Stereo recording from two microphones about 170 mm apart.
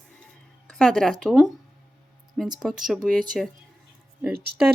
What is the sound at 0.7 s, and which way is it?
Speech, 5° left (ahead or behind).